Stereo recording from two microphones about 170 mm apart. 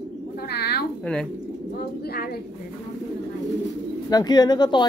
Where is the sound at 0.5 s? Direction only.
70° left (ahead or behind).